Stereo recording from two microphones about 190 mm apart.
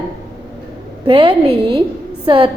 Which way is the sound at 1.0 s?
25° right (ahead or behind).